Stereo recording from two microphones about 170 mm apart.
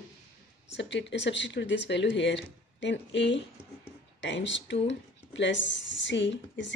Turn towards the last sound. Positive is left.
turn(degrees=90)